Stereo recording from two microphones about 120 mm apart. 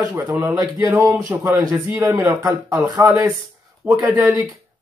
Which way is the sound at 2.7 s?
15° right (ahead or behind).